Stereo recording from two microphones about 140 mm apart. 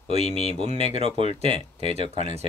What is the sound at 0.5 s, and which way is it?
Speech, 45° right (ahead or behind).